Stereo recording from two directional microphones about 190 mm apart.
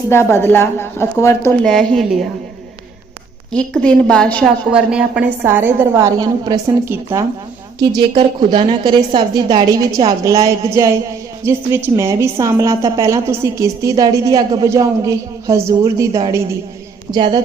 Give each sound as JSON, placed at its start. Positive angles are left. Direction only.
{"t": 0.1, "sound": "a woman's voice", "side_deg": 15}
{"t": 1.6, "sound": "a woman's voice", "side_deg": 0}
{"t": 3.5, "sound": "a woman's voice", "side_deg": 5}
{"t": 4.7, "sound": "a woman's voice", "side_deg": -5}